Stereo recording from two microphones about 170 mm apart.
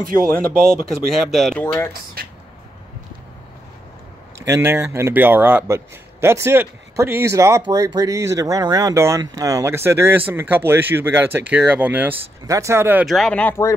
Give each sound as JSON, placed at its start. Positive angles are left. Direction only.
{"t": 0.6, "sound": "speech", "side_deg": 5}
{"t": 1.6, "sound": "speech", "side_deg": 10}
{"t": 2.2, "sound": "a sound", "side_deg": -60}
{"t": 4.5, "sound": "speech", "side_deg": -15}
{"t": 13.0, "sound": "speech", "side_deg": 0}